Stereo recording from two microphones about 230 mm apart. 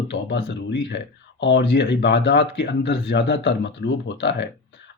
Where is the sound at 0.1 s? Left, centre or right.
Left.